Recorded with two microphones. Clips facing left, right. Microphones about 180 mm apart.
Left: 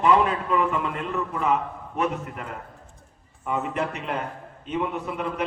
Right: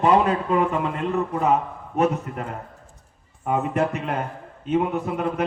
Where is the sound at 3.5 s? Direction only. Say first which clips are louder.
Right 5 dB; 45° right (ahead or behind).